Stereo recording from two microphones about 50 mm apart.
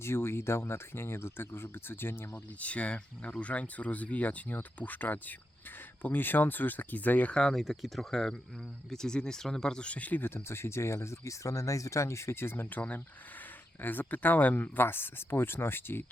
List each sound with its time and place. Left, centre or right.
0.0 s speech: left
2.3 s speech: left
7.3 s speech: centre
9.8 s speech: left
10.2 s speech: left
13.8 s speech: left